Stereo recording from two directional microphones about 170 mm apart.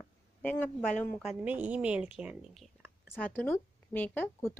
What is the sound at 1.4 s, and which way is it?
A woman's voice, 10° right (ahead or behind).